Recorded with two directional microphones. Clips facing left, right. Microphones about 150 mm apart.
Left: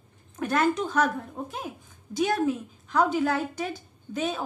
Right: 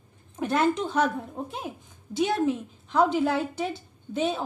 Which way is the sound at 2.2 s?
Centre (ahead or behind).